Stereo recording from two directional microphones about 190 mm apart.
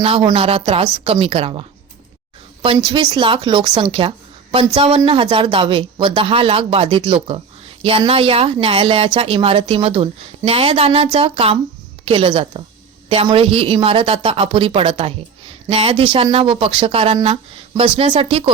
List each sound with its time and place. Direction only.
0.0 s a woman's voice: 30° right (ahead or behind)